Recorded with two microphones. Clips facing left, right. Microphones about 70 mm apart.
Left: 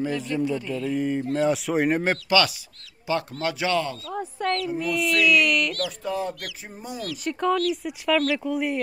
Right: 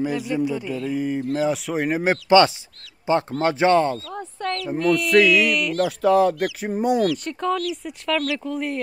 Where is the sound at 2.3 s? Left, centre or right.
Right.